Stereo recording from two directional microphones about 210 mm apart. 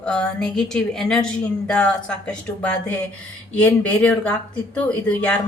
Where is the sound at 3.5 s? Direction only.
5° left (ahead or behind).